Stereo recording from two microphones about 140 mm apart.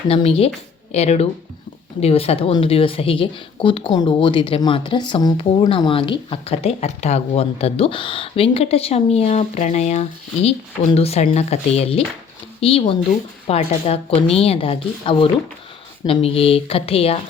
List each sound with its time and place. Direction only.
0.1 s speech: 45° left (ahead or behind)